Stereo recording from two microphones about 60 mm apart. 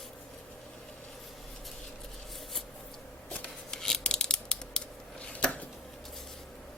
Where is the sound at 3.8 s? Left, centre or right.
Centre.